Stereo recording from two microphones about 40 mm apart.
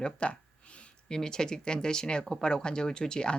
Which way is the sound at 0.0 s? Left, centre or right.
Left.